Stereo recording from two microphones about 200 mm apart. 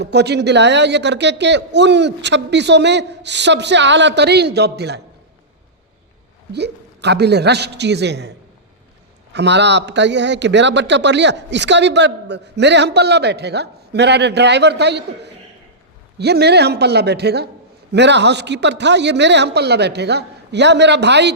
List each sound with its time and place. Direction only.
0.0 s a man's voice: 55° right (ahead or behind)
6.5 s a man's voice: 55° right (ahead or behind)
9.3 s a man's voice: 60° right (ahead or behind)